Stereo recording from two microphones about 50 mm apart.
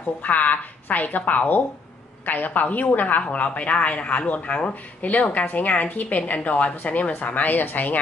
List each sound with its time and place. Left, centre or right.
0.2 s a woman's voice: left